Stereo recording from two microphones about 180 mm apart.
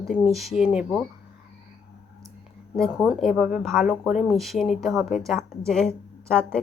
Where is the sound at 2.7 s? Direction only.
Centre (ahead or behind).